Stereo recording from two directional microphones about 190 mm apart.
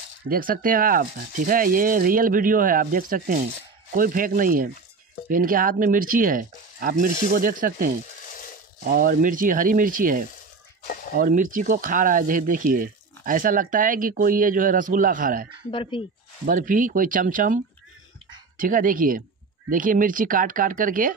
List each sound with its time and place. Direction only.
0.3 s speech: 45° right (ahead or behind)
15.7 s speech: 25° left (ahead or behind)
16.4 s speech: 45° right (ahead or behind)
18.6 s speech: 45° right (ahead or behind)